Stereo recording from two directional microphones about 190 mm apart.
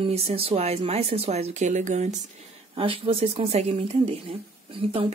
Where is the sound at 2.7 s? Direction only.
30° right (ahead or behind).